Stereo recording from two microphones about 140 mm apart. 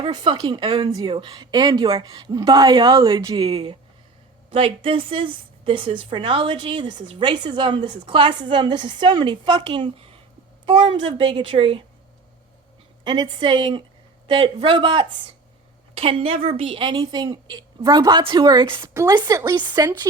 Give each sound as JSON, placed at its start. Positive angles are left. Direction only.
{"t": 0.0, "sound": "a woman's voice", "side_deg": -35}
{"t": 4.4, "sound": "a woman's voice", "side_deg": -40}
{"t": 13.1, "sound": "a woman's voice", "side_deg": -35}